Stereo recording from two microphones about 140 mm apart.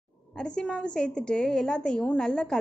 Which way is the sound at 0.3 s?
5° left (ahead or behind).